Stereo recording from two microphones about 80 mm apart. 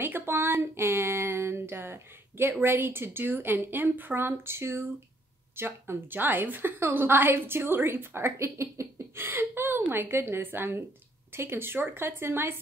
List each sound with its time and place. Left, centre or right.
0.0 s a woman's voice: right